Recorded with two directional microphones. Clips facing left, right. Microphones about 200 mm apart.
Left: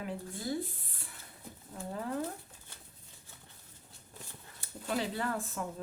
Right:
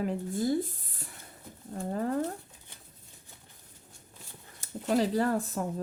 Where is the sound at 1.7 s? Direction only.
50° right (ahead or behind).